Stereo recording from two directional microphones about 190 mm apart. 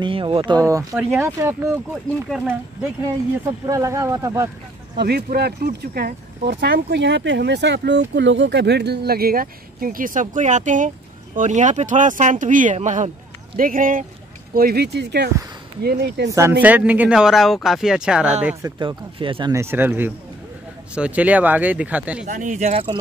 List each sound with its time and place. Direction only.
0.0 s speech: 25° right (ahead or behind); by 2.9 s 5° right (ahead or behind)
3.6 s speech: 15° right (ahead or behind)
4.9 s speech: 60° right (ahead or behind)
16.3 s speech: 15° right (ahead or behind)
18.8 s speech: 25° right (ahead or behind)
19.5 s speech: 15° right (ahead or behind)
22.2 s speech: 40° right (ahead or behind)